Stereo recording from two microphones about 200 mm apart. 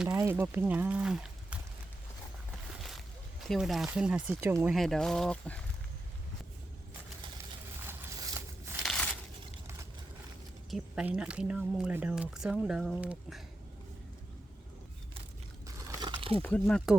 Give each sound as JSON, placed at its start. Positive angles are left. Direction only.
{"t": 0.0, "sound": "speech", "side_deg": -10}
{"t": 3.5, "sound": "speech", "side_deg": 0}
{"t": 4.7, "sound": "speech", "side_deg": 0}
{"t": 7.9, "sound": "a sound", "side_deg": -15}
{"t": 8.8, "sound": "a sound", "side_deg": 0}
{"t": 10.7, "sound": "speech", "side_deg": 0}
{"t": 15.6, "sound": "crumpling", "side_deg": -15}
{"t": 16.4, "sound": "speech", "side_deg": 5}